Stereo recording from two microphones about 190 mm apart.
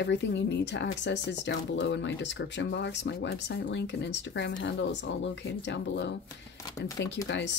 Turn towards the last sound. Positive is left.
turn(degrees=70)  # may be behind; listen again after turning